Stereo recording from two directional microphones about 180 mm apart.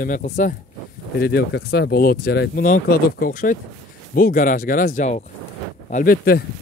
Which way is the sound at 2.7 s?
50° left (ahead or behind).